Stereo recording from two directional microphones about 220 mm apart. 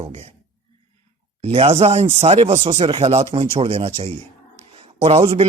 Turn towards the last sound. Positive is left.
turn(degrees=-25)  # may be behind; listen again after turning